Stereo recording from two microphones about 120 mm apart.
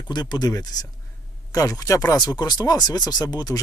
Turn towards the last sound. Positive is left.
turn(degrees=30)  # may be behind; listen again after turning